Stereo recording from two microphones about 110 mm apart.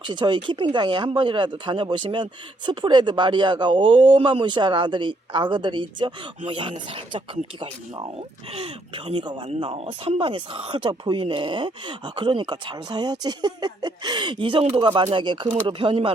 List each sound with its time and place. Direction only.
0.1 s speech: 45° right (ahead or behind)